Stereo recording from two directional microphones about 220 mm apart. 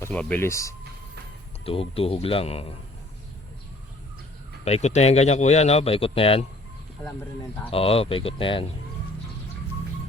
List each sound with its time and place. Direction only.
0.0 s speech: 5° left (ahead or behind)
1.6 s speech: 25° left (ahead or behind)
4.6 s speech: 30° left (ahead or behind)
7.7 s speech: 25° left (ahead or behind)